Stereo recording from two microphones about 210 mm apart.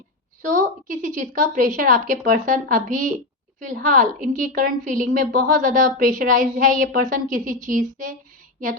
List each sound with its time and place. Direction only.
0.4 s a woman's voice: 40° right (ahead or behind)